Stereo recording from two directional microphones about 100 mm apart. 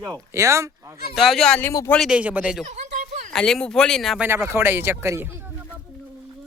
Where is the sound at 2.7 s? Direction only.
90° right.